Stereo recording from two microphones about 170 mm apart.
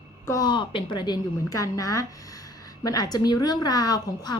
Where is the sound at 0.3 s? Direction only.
25° left (ahead or behind).